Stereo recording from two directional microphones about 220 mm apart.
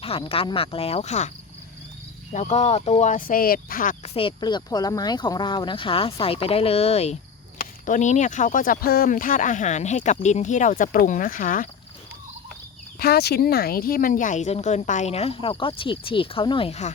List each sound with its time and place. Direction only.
0.0 s speech: 25° left (ahead or behind)
2.3 s speech: 30° left (ahead or behind)
13.0 s speech: 45° left (ahead or behind); by 16.9 s 30° left (ahead or behind)